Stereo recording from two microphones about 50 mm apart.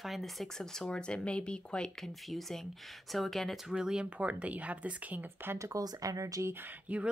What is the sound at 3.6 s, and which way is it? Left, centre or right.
Speech, centre.